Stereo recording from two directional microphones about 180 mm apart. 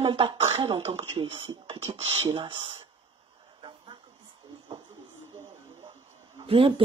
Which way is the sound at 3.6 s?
25° right (ahead or behind).